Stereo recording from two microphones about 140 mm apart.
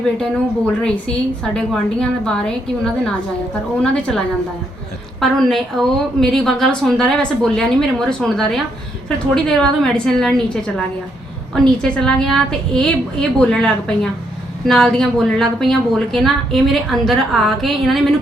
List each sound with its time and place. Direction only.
0.8 s a woman's voice: 5° left (ahead or behind)
5.2 s a woman's voice: centre (ahead or behind)